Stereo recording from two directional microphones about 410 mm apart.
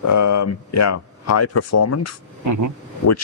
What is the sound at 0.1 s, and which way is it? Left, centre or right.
Speech, left.